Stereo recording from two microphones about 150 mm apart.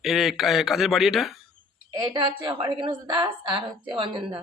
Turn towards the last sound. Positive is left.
turn(degrees=-35)  # may be behind; listen again after turning